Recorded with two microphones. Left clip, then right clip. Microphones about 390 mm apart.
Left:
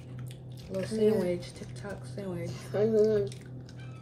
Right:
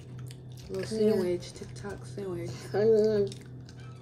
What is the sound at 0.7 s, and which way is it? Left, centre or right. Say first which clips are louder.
A woman's voice: even; centre.